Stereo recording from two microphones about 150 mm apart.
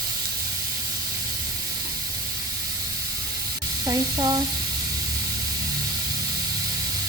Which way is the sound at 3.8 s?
25° right (ahead or behind).